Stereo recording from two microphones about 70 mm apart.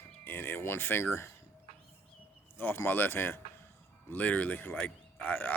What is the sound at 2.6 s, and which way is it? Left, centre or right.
Speech, left.